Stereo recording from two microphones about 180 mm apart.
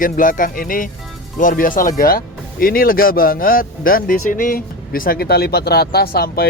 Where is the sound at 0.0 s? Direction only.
50° left (ahead or behind).